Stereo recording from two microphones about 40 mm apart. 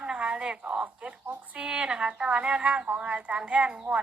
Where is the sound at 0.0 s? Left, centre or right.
Right.